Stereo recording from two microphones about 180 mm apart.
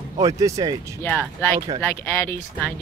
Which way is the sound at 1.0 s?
10° left (ahead or behind).